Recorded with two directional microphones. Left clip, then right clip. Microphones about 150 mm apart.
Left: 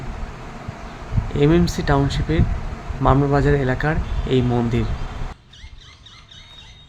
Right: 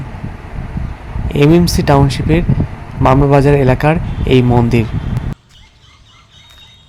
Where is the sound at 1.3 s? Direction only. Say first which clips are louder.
Right 7 dB; 30° right (ahead or behind).